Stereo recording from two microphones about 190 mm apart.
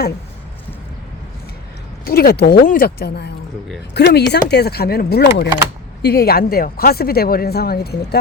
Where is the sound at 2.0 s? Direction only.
55° left (ahead or behind).